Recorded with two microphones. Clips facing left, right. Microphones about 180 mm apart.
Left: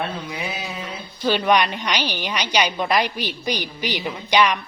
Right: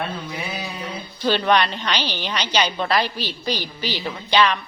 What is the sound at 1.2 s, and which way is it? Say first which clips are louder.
A woman's voice: even; 10° left (ahead or behind).